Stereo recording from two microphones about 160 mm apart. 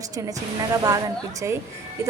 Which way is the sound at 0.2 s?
20° right (ahead or behind).